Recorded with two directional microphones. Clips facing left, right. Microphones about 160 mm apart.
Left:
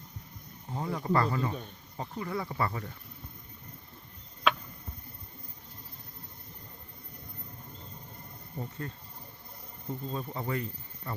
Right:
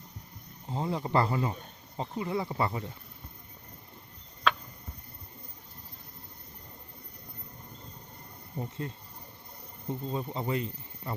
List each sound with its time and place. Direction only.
0.7 s speech: 25° right (ahead or behind)
8.5 s speech: 15° right (ahead or behind)
9.9 s speech: 20° right (ahead or behind)